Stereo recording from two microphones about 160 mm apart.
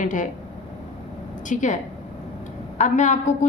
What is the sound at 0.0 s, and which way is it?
Speech, 55° left (ahead or behind).